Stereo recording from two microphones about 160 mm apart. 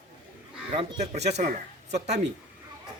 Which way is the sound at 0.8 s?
45° right (ahead or behind).